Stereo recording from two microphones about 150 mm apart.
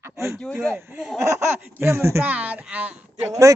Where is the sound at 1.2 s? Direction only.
20° right (ahead or behind).